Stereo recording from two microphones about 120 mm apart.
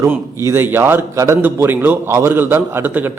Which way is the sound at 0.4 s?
20° right (ahead or behind).